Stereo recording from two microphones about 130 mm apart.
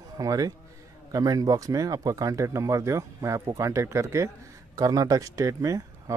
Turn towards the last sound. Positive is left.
turn(degrees=-25)  # may be behind; listen again after turning